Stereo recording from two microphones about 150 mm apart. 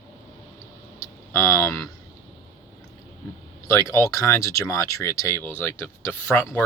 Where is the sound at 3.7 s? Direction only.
20° left (ahead or behind).